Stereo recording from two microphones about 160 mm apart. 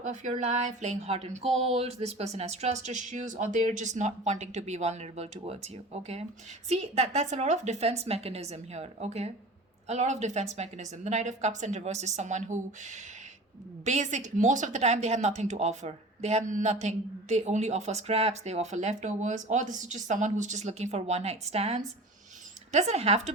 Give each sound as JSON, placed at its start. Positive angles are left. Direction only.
{"t": 0.0, "sound": "a woman's voice", "side_deg": -50}
{"t": 13.8, "sound": "a woman's voice", "side_deg": -50}